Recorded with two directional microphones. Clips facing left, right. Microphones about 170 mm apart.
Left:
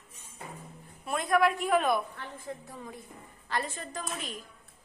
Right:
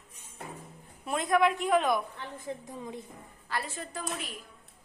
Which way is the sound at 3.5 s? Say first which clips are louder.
Left 2 dB; 5° right (ahead or behind).